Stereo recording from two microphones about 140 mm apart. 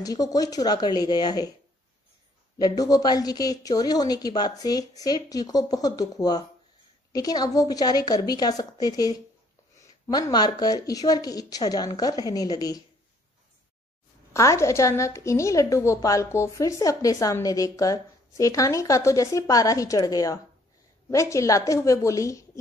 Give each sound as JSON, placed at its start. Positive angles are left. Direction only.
{"t": 0.0, "sound": "a woman's voice", "side_deg": 25}
{"t": 2.6, "sound": "a woman's voice", "side_deg": 25}
{"t": 14.3, "sound": "a woman's voice", "side_deg": 20}